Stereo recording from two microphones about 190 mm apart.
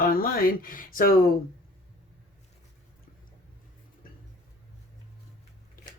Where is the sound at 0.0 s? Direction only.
50° left (ahead or behind).